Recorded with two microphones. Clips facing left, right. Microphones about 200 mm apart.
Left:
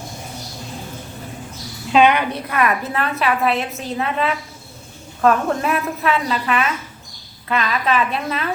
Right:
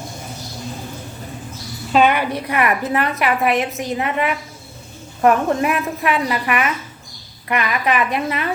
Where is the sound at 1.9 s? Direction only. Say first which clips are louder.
Left 1 dB; 5° right (ahead or behind).